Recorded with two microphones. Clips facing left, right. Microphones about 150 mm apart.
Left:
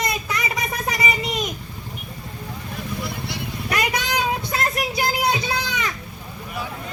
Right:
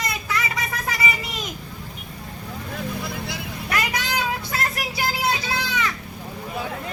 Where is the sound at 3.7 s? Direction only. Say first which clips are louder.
Left 2 dB; 20° left (ahead or behind).